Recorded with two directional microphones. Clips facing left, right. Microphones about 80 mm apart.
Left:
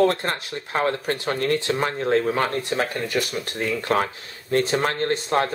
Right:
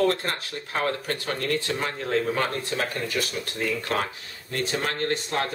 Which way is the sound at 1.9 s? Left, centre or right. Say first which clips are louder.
Left 4 dB; left.